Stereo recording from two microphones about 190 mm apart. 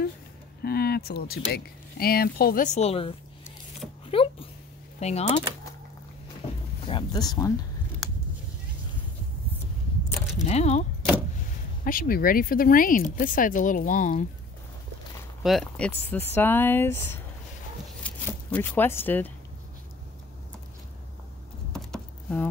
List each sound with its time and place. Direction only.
0.6 s speech: 55° left (ahead or behind); by 3.2 s 30° left (ahead or behind)
4.1 s a sound: 30° left (ahead or behind)
5.0 s speech: 35° left (ahead or behind)
6.9 s speech: 25° left (ahead or behind)
10.4 s speech: 35° left (ahead or behind)
11.8 s speech: 50° left (ahead or behind)
15.4 s speech: centre (ahead or behind)
18.0 s shuffling cards: 10° left (ahead or behind)
21.7 s a sound: 5° left (ahead or behind)